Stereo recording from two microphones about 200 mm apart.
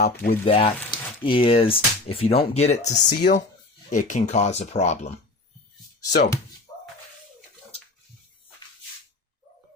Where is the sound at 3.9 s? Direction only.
40° left (ahead or behind).